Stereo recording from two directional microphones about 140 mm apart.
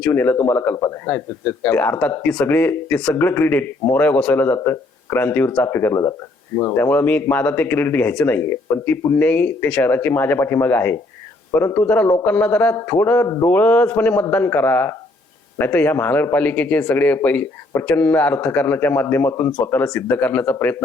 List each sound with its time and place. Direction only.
0.0 s speech: 15° left (ahead or behind)
6.8 s speech: 10° left (ahead or behind)